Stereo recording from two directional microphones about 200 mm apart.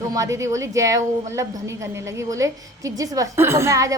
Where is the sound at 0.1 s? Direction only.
15° right (ahead or behind).